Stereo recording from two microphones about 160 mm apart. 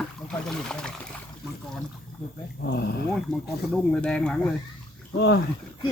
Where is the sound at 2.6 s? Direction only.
90° left.